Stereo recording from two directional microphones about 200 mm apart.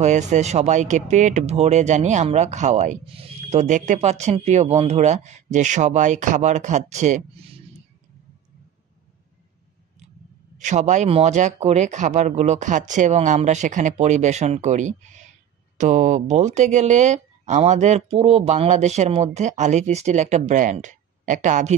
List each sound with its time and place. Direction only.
0.0 s speech: 35° right (ahead or behind)
10.6 s speech: 35° right (ahead or behind)